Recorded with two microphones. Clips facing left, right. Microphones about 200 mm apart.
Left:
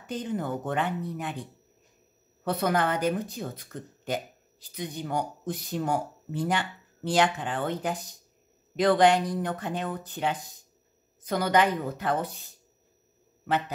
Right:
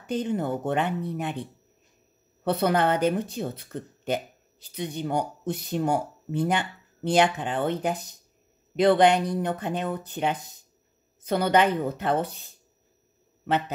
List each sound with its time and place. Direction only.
0.1 s speech: 25° right (ahead or behind)
2.4 s speech: 30° right (ahead or behind)